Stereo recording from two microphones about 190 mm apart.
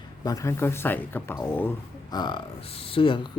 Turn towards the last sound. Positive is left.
turn(degrees=25)  # may be behind; listen again after turning